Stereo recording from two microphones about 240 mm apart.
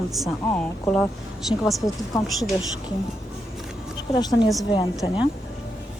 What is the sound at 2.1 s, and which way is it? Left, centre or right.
Speech, centre.